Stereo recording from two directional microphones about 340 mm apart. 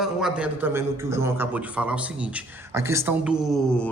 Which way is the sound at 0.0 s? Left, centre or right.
Centre.